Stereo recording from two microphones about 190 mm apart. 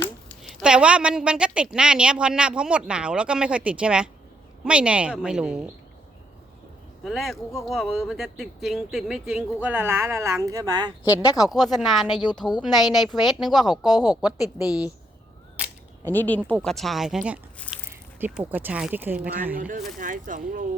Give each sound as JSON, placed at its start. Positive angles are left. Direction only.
{"t": 0.0, "sound": "a sound", "side_deg": 5}
{"t": 0.6, "sound": "speech", "side_deg": -5}
{"t": 7.0, "sound": "speech", "side_deg": 0}
{"t": 11.5, "sound": "speech", "side_deg": 0}
{"t": 12.2, "sound": "speech", "side_deg": 25}
{"t": 12.8, "sound": "speech", "side_deg": 0}
{"t": 13.8, "sound": "speech", "side_deg": 20}
{"t": 16.0, "sound": "speech", "side_deg": 10}
{"t": 17.7, "sound": "a sound", "side_deg": 0}
{"t": 18.2, "sound": "speech", "side_deg": -10}
{"t": 19.5, "sound": "speech", "side_deg": -45}